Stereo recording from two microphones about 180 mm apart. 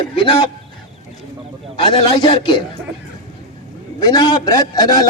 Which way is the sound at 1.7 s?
30° left (ahead or behind).